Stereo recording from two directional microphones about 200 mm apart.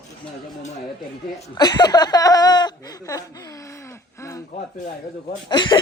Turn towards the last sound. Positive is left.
turn(degrees=20)  # may be behind; listen again after turning